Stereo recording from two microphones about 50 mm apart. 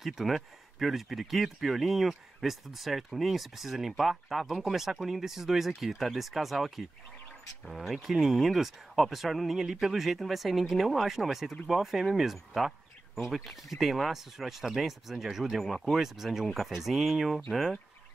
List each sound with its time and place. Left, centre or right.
0.0 s speech: centre